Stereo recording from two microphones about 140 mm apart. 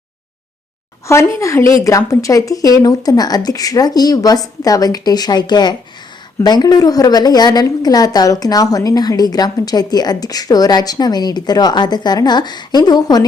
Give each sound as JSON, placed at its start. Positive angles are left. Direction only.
{"t": 1.0, "sound": "a woman's voice", "side_deg": 20}